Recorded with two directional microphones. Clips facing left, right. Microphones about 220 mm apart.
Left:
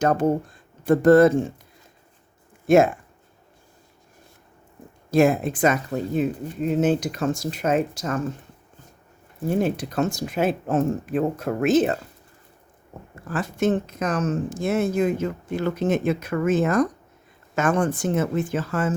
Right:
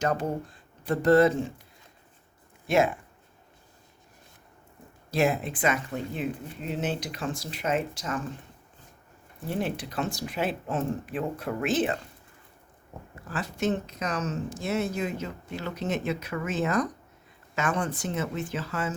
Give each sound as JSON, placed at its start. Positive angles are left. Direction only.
{"t": 0.0, "sound": "speech", "side_deg": 50}
{"t": 2.6, "sound": "speech", "side_deg": 50}
{"t": 5.1, "sound": "speech", "side_deg": 50}
{"t": 9.5, "sound": "speech", "side_deg": 45}
{"t": 13.3, "sound": "speech", "side_deg": 50}